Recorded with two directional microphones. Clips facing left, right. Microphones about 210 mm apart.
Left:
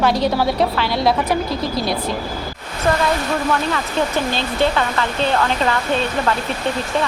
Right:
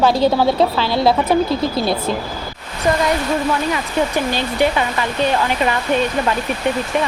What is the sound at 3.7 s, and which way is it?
Speech, 15° right (ahead or behind).